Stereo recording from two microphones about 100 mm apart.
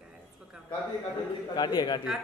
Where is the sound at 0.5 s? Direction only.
10° right (ahead or behind).